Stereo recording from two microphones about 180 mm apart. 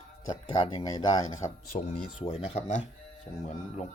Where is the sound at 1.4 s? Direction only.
45° left (ahead or behind).